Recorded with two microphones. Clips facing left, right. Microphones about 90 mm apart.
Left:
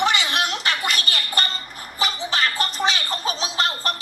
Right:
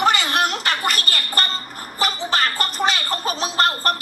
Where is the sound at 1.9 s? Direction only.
45° right (ahead or behind).